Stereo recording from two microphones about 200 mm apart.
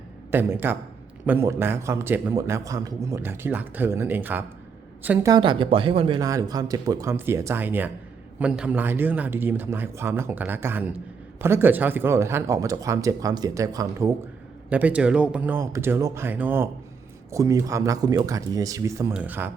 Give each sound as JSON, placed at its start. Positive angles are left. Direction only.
{"t": 0.3, "sound": "a man's voice", "side_deg": -10}
{"t": 5.3, "sound": "a man's voice", "side_deg": -25}